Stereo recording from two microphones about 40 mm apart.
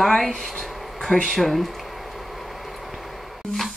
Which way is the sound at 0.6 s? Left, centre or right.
Centre.